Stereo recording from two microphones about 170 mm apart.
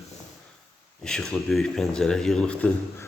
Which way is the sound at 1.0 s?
5° left (ahead or behind).